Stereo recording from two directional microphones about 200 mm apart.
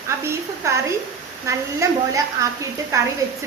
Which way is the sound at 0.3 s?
15° right (ahead or behind).